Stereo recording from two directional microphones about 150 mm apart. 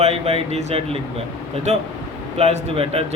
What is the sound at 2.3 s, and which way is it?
Speech, 40° right (ahead or behind).